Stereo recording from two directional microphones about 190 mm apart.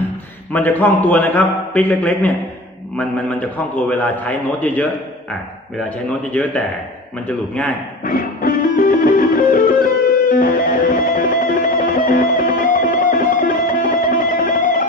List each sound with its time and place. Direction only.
0.5 s a man's voice: 10° left (ahead or behind)
6.3 s a man's voice: 10° left (ahead or behind)
8.0 s music: 50° left (ahead or behind)